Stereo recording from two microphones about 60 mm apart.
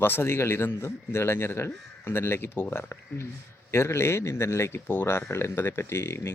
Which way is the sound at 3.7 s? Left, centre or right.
Left.